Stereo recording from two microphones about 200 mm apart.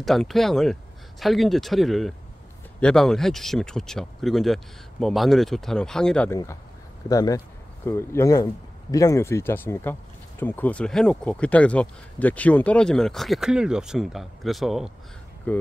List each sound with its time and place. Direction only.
0.0 s speech: centre (ahead or behind)